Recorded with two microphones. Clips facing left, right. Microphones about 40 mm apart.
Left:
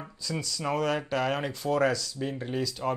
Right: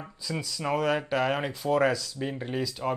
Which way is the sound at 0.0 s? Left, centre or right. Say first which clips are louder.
Even; centre.